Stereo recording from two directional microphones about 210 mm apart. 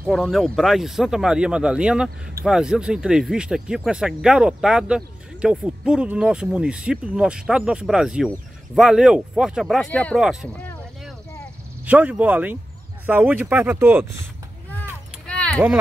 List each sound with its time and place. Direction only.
0.1 s speech: centre (ahead or behind)
11.8 s speech: 5° right (ahead or behind)
14.7 s a sound: 5° left (ahead or behind)